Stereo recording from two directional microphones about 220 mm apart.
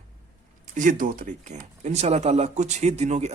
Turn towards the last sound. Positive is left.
turn(degrees=-30)  # may be behind; listen again after turning